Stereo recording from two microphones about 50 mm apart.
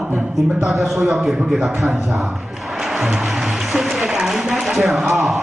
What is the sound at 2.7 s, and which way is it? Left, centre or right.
Music, centre.